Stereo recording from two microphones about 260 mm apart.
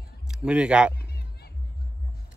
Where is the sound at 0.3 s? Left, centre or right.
Centre.